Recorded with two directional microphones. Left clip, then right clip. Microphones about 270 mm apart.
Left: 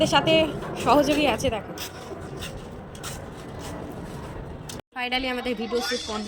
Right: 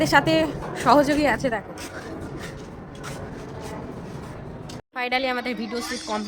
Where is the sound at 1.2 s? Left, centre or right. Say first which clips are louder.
Right 1 dB; right.